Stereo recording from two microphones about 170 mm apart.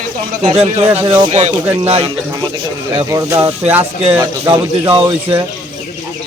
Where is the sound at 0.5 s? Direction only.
35° right (ahead or behind).